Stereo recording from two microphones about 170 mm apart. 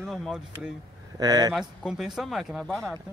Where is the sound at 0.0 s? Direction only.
Centre (ahead or behind).